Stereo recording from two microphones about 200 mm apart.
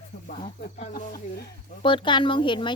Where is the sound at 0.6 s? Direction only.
45° left (ahead or behind).